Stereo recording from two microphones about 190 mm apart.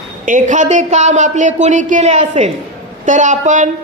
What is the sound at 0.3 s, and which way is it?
Speech, 40° right (ahead or behind).